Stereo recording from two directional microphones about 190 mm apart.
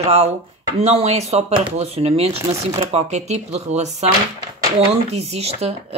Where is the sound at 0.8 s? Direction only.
35° right (ahead or behind).